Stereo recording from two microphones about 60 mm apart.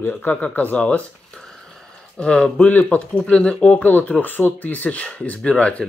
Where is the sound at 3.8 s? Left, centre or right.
Left.